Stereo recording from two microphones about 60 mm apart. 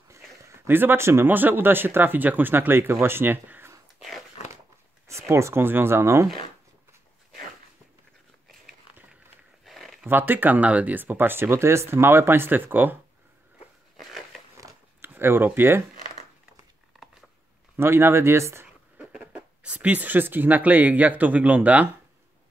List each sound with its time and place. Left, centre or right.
0.7 s speech: right
5.3 s speech: right
5.6 s speech: right
9.7 s a sound: centre
10.0 s speech: right
13.9 s a sound: centre
15.0 s speech: right
17.7 s speech: right
18.9 s speech: right